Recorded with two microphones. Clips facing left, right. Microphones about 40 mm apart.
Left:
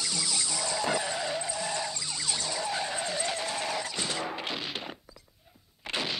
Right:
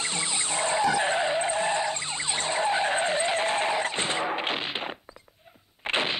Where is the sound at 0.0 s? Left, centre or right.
Right.